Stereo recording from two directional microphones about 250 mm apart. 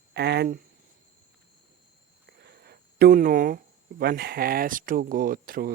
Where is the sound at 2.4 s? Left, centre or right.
Right.